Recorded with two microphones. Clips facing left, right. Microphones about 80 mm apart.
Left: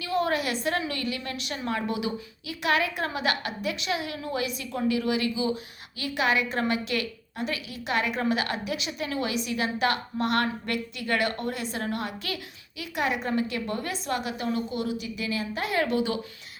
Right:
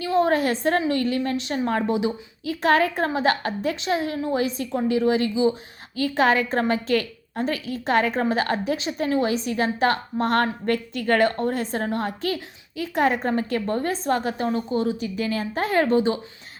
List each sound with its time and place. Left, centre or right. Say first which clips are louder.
0.0 s a woman's voice: right 6 dB; right